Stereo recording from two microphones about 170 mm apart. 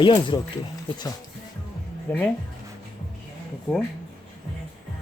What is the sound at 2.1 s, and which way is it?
Speech, 15° left (ahead or behind).